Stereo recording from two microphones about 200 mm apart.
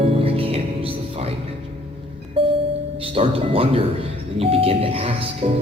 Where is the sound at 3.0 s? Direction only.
30° right (ahead or behind).